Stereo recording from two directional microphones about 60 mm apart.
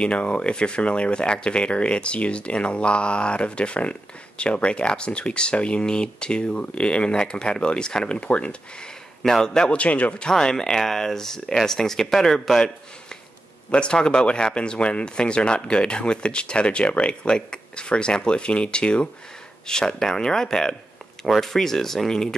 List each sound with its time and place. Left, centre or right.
0.0 s speech: centre
9.2 s speech: centre
9.8 s speech: left; by 22.3 s centre